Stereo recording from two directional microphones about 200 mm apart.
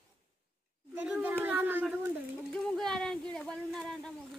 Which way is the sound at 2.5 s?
Centre (ahead or behind).